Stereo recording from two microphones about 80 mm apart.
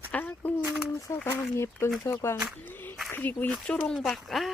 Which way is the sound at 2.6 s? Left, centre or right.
Left.